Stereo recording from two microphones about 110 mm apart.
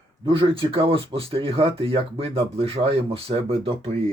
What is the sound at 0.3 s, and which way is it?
Speech, 50° right (ahead or behind).